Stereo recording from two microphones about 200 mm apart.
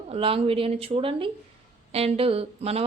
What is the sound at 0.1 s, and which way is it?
Speech, 30° right (ahead or behind).